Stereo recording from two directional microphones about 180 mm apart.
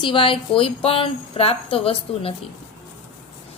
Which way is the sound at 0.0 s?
30° left (ahead or behind).